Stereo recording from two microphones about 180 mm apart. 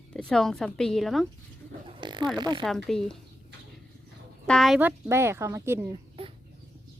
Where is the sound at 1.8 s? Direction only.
30° right (ahead or behind).